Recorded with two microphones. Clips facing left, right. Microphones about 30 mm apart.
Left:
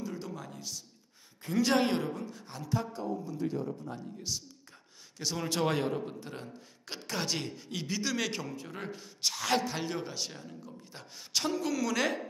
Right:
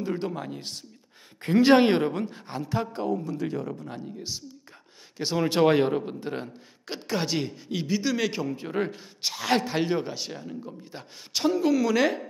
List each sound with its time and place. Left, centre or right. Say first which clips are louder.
0.0 s speech: right 9 dB; right
3.0 s speech: right 6 dB; right
5.1 s speech: right 8 dB; right
6.9 s a man's voice: right 6 dB; centre
8.5 s speech: right 11 dB; right
9.2 s a man's voice: right 4 dB; centre